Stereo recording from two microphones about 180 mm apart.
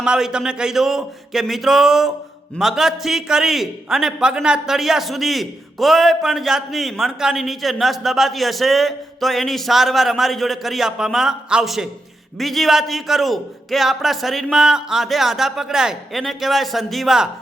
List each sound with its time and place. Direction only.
0.0 s a man's voice: 5° right (ahead or behind)